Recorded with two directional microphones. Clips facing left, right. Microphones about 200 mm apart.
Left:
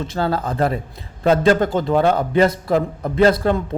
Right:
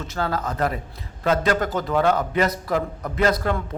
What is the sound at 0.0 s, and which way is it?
A man's voice, 30° left (ahead or behind).